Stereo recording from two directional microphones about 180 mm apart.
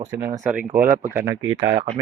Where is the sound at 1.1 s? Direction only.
20° right (ahead or behind).